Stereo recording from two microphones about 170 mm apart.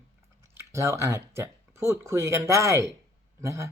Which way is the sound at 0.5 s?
15° right (ahead or behind).